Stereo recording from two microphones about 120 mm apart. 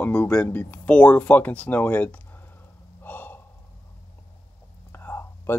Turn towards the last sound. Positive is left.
turn(degrees=20)  # may be behind; listen again after turning